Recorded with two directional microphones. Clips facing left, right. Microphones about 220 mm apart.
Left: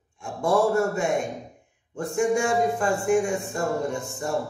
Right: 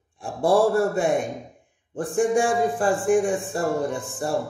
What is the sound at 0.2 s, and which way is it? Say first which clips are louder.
A man's voice: right 3 dB; 35° right (ahead or behind).